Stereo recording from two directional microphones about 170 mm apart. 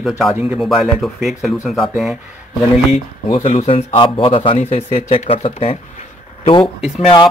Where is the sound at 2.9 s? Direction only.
35° left (ahead or behind).